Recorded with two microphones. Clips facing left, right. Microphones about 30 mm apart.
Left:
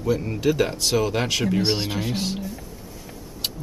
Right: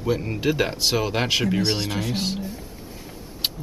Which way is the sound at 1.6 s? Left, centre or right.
Centre.